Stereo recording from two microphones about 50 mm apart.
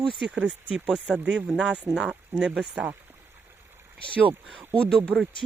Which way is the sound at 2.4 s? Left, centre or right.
Right.